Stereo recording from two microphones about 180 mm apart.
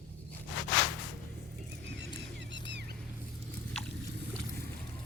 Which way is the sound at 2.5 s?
75° right (ahead or behind).